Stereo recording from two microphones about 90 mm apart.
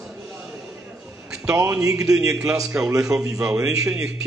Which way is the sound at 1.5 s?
35° right (ahead or behind).